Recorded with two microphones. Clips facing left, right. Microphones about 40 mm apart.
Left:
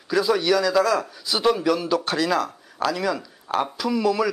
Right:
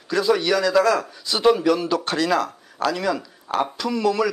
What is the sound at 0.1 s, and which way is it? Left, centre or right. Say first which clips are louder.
Speech: even; centre.